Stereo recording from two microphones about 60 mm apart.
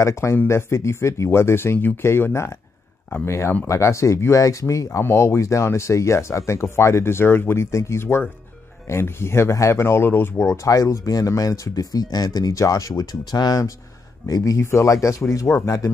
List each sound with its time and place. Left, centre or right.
0.0 s speech: left
4.8 s speech: left
7.7 s speech: left
10.3 s speech: left
14.2 s speech: left
14.6 s speech: left